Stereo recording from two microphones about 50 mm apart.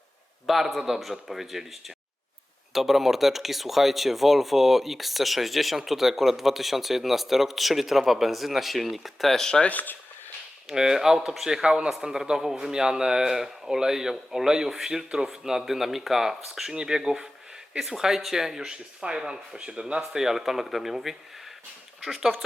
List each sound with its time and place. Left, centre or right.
0.4 s speech: centre
2.7 s speech: centre
9.6 s speech: left
10.7 s speech: centre
20.0 s speech: centre